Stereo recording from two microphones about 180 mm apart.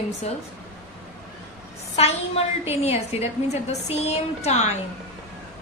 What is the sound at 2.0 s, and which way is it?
A woman's voice, 35° left (ahead or behind).